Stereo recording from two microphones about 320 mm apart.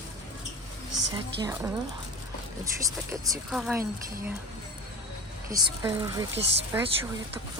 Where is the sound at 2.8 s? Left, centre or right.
Centre.